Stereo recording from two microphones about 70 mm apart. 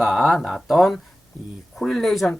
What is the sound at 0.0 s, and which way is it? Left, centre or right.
Speech, centre.